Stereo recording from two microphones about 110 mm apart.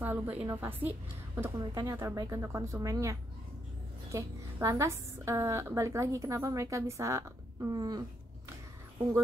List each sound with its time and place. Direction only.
0.0 s a woman's voice: 15° right (ahead or behind)
1.6 s a woman's voice: 40° right (ahead or behind)